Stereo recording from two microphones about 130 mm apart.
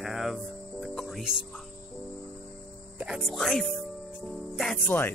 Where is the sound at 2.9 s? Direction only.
5° right (ahead or behind).